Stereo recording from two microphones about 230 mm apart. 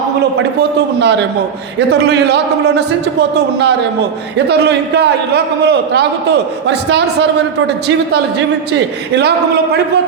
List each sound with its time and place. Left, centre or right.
0.9 s a man's voice: right
4.4 s a man's voice: right